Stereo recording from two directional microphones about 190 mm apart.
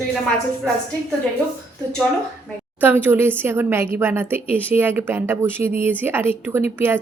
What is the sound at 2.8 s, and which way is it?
A woman's voice, 10° right (ahead or behind).